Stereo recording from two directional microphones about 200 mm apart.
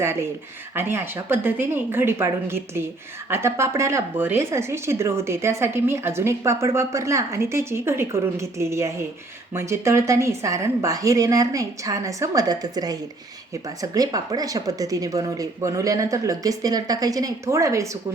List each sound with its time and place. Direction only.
0.0 s a woman's voice: 15° right (ahead or behind)